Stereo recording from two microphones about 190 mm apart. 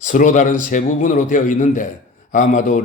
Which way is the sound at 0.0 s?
45° left (ahead or behind).